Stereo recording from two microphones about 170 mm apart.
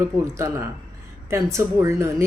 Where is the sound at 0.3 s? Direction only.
15° right (ahead or behind).